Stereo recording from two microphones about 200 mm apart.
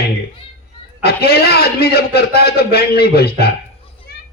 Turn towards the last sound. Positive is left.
turn(degrees=50)  # may be behind; listen again after turning